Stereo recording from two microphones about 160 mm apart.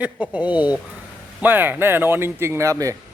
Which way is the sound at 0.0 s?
10° right (ahead or behind).